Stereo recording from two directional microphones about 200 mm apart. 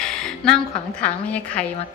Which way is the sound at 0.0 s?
5° left (ahead or behind).